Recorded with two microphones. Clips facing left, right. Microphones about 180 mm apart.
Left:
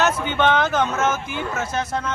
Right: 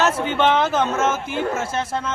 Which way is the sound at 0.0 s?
30° right (ahead or behind).